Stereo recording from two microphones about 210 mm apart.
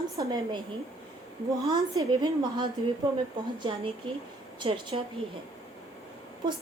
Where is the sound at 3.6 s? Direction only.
25° right (ahead or behind).